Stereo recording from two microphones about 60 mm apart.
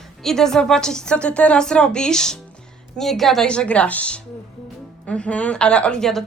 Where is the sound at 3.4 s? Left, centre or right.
Centre.